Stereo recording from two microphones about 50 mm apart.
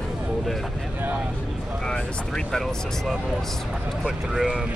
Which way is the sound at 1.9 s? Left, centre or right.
Centre.